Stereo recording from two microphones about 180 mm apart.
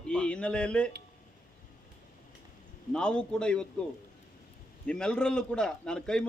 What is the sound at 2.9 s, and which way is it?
Speech, 5° left (ahead or behind).